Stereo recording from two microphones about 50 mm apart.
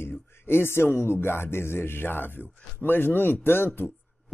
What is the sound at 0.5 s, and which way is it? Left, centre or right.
Speech, left.